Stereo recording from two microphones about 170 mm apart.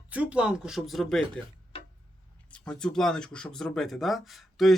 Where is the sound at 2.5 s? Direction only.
5° left (ahead or behind).